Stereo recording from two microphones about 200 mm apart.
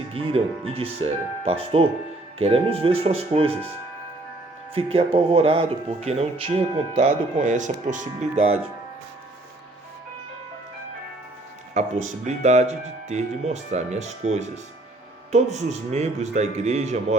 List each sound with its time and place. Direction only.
0.1 s speech: 30° right (ahead or behind)
4.7 s speech: 30° right (ahead or behind)
11.7 s speech: 35° right (ahead or behind)